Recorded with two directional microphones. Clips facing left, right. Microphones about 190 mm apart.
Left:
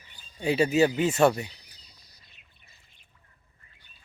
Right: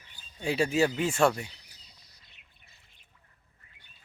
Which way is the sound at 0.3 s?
Centre (ahead or behind).